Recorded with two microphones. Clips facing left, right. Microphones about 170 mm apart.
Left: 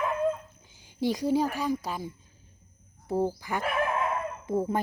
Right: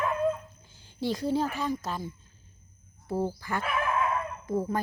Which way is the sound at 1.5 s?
10° left (ahead or behind).